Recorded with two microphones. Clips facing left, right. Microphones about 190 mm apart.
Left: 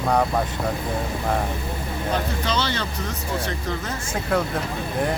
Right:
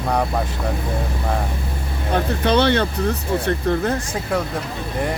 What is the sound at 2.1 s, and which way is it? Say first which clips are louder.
Speech: right 8 dB; 60° right (ahead or behind).